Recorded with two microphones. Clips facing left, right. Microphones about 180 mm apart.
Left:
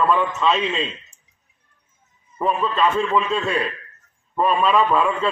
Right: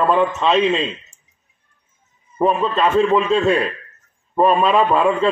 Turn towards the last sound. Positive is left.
turn(degrees=-35)  # may be behind; listen again after turning